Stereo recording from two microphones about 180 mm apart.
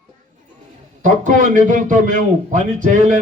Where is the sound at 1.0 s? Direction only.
45° right (ahead or behind).